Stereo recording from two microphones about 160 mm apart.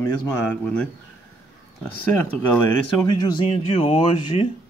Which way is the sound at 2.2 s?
15° left (ahead or behind).